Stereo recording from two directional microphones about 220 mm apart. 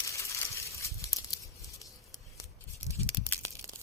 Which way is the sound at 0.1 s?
15° left (ahead or behind).